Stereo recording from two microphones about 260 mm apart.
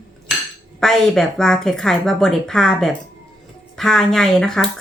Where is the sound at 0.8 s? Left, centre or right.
Centre.